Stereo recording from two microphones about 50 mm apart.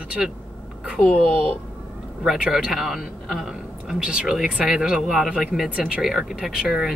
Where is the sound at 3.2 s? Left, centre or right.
Centre.